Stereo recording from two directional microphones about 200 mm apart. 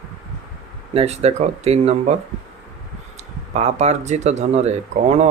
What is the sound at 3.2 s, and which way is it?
Speech, 35° right (ahead or behind).